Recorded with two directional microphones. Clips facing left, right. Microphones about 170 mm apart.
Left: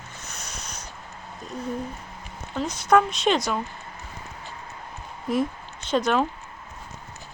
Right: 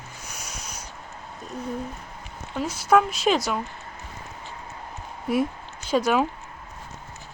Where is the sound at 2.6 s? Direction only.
5° right (ahead or behind).